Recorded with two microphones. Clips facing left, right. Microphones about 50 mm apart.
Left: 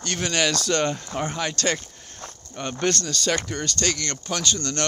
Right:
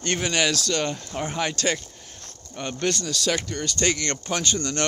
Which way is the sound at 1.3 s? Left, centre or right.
Centre.